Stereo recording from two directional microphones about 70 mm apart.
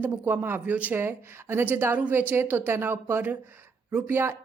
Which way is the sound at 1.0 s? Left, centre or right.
Right.